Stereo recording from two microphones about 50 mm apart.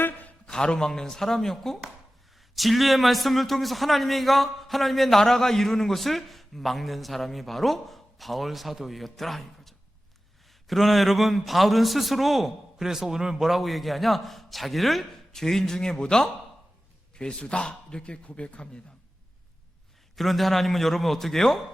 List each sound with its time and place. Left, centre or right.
0.0 s a sound: left
0.4 s a man's voice: centre
20.1 s a man's voice: centre